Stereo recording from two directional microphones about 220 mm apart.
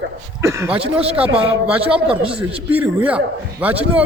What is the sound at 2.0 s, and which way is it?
Speech, 25° right (ahead or behind).